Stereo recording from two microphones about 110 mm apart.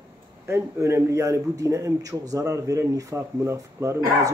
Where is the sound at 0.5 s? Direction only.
25° right (ahead or behind).